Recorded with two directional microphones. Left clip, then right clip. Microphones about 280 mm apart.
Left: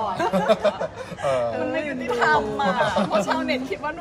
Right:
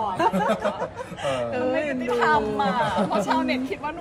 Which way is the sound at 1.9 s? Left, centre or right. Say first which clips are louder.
Left 3 dB; centre.